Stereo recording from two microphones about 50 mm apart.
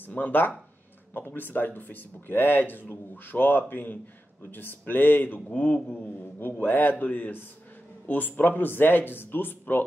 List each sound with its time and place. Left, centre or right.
0.0 s speech: left